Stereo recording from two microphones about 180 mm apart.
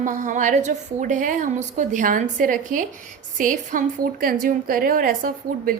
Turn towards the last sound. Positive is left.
turn(degrees=-50)  # may be behind; listen again after turning